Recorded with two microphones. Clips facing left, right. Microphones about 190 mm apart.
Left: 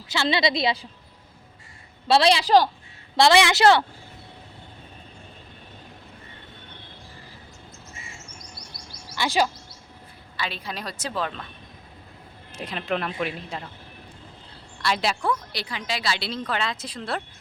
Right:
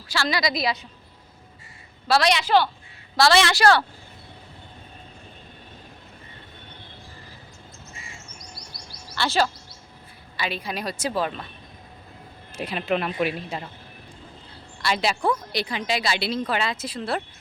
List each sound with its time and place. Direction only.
0.1 s a woman's voice: 25° left (ahead or behind)
2.0 s a woman's voice: 25° left (ahead or behind)
3.2 s a woman's voice: 15° left (ahead or behind)
9.1 s speech: 15° left (ahead or behind)
10.3 s speech: 15° right (ahead or behind)
12.5 s speech: 5° right (ahead or behind)
14.8 s a woman's voice: centre (ahead or behind)
15.2 s speech: 20° right (ahead or behind)